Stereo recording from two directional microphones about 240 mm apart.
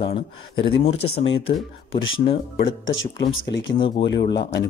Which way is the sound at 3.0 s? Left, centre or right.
Left.